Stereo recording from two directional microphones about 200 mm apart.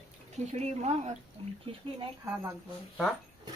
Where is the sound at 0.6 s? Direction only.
35° right (ahead or behind).